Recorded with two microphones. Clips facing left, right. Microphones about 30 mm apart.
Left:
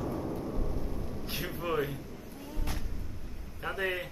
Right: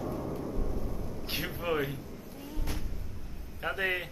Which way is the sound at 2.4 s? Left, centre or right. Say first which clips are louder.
Right 1 dB; centre.